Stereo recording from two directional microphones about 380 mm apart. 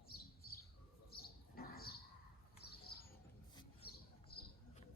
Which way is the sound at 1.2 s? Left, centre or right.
Left.